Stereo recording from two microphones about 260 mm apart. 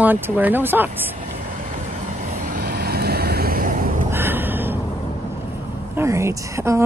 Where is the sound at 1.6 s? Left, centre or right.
Right.